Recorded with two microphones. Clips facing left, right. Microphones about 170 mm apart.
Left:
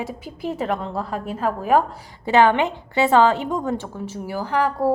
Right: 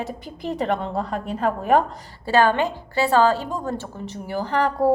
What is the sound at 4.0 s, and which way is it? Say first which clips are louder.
Speech: even; 5° left (ahead or behind).